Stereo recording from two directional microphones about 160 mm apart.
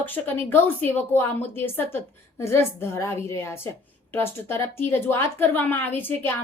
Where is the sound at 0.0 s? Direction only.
10° left (ahead or behind).